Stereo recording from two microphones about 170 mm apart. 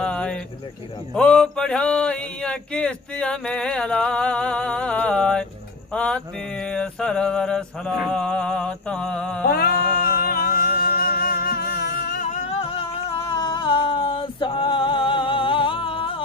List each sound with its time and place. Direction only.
0.0 s a sound: 5° left (ahead or behind)
9.5 s music: 65° left (ahead or behind)
12.2 s music: 40° left (ahead or behind)